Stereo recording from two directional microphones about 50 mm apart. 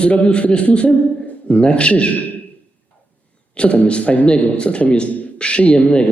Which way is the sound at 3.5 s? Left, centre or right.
Left.